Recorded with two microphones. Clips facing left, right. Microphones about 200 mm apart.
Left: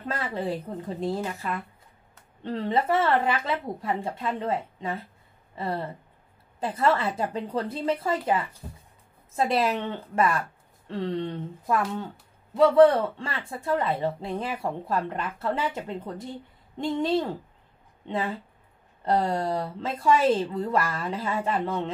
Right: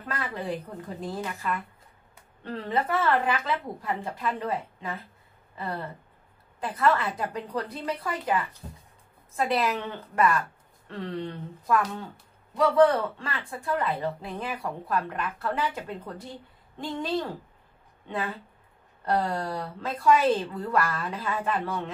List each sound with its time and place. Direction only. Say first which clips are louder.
0.1 s speech: left 2 dB; 25° left (ahead or behind)
18.0 s speech: left 3 dB; 25° left (ahead or behind)